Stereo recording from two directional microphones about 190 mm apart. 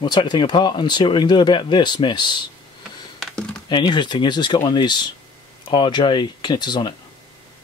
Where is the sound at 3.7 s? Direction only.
25° left (ahead or behind).